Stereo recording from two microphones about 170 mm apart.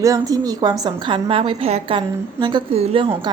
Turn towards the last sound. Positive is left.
turn(degrees=-35)  # may be behind; listen again after turning